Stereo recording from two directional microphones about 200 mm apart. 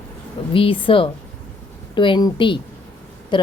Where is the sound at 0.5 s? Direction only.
25° left (ahead or behind).